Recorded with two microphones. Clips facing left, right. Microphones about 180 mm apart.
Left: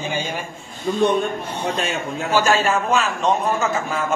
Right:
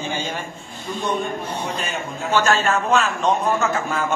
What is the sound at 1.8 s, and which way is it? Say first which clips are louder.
Speech: left 3 dB; 70° left (ahead or behind).